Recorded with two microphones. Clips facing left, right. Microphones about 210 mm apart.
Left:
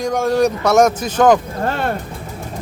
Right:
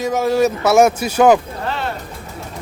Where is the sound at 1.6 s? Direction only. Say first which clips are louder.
Left 4 dB; 50° left (ahead or behind).